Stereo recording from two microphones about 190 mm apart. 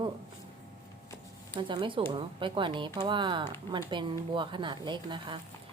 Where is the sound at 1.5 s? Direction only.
25° right (ahead or behind).